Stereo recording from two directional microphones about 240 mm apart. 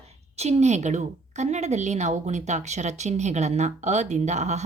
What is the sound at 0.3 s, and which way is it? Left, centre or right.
A woman's voice, right.